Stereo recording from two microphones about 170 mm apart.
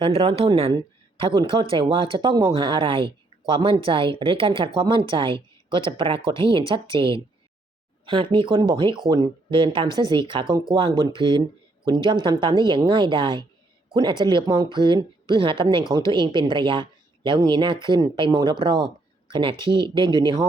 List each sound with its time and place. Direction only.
0.0 s speech: 35° right (ahead or behind)